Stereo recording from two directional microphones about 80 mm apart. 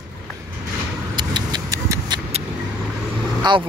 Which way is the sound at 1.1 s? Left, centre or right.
Right.